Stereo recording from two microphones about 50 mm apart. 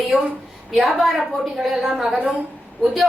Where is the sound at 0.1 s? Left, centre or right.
Centre.